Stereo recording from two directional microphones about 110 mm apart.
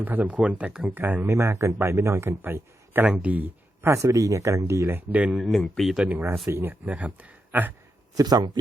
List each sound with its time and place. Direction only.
0.0 s a man's voice: 15° right (ahead or behind)
5.4 s speech: centre (ahead or behind)
6.1 s speech: 15° right (ahead or behind)
8.1 s speech: 35° right (ahead or behind)